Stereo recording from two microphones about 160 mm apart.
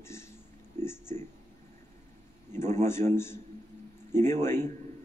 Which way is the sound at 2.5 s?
15° left (ahead or behind).